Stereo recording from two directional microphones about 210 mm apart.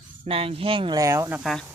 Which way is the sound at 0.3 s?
30° right (ahead or behind).